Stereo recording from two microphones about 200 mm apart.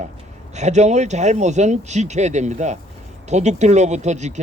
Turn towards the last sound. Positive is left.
turn(degrees=-35)  # may be behind; listen again after turning